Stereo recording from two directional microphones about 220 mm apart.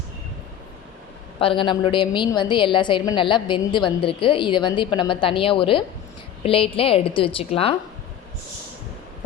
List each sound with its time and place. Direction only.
1.4 s a woman's voice: 25° left (ahead or behind)